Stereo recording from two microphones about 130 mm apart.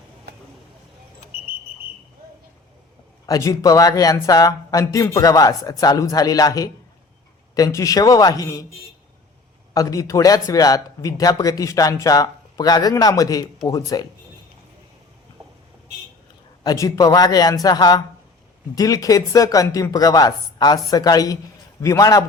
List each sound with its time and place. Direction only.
1.3 s whistle: 90° right
3.2 s speech: 25° left (ahead or behind)
9.7 s speech: 25° left (ahead or behind)
16.6 s speech: 25° left (ahead or behind)